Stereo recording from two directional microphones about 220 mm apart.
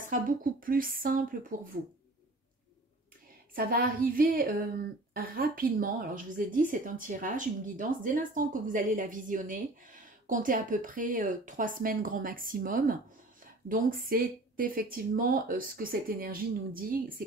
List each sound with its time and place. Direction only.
0.0 s a woman's voice: 40° right (ahead or behind)
3.5 s a woman's voice: 40° right (ahead or behind)